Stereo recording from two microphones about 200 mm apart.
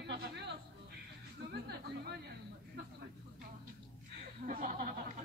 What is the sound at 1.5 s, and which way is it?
Chatter, 55° right (ahead or behind).